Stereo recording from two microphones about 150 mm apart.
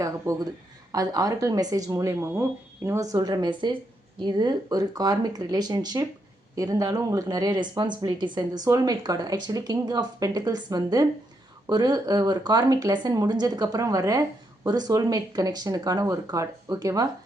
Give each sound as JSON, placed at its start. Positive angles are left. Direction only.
{"t": 0.0, "sound": "speech", "side_deg": -20}